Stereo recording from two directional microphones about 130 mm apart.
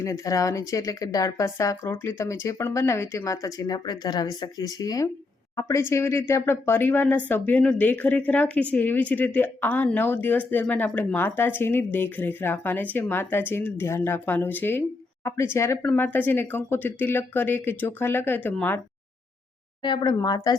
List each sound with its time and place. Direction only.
0.0 s speech: 25° left (ahead or behind)
19.8 s speech: 35° left (ahead or behind)